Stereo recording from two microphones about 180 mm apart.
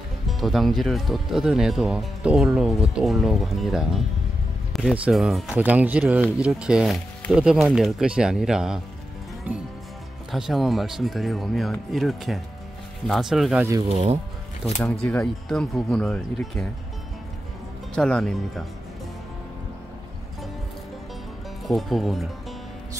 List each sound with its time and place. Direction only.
0.3 s speech: centre (ahead or behind)
10.3 s speech: centre (ahead or behind)
13.8 s speech: 40° right (ahead or behind)
14.8 s speech: 5° left (ahead or behind)
17.9 s speech: 5° left (ahead or behind)
21.6 s speech: centre (ahead or behind)